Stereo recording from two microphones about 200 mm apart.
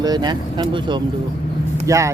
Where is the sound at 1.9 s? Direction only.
15° right (ahead or behind).